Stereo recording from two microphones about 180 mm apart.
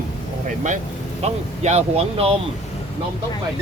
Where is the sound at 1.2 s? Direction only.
35° right (ahead or behind).